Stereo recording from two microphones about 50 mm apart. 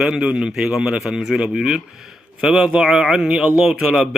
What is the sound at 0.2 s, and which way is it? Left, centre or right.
A man's voice, right.